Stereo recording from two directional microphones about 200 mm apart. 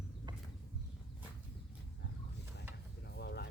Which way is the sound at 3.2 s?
55° left (ahead or behind).